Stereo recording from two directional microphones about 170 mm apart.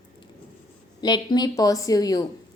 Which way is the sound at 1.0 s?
25° left (ahead or behind).